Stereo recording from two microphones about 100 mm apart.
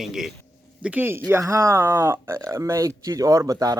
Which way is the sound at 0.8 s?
15° right (ahead or behind).